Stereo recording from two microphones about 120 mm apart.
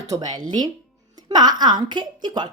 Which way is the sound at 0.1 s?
35° right (ahead or behind).